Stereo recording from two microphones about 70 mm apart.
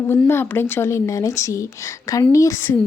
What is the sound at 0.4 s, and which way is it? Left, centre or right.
A woman's voice, left.